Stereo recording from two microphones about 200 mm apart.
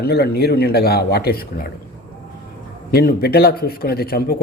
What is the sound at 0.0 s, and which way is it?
Speech, 50° left (ahead or behind).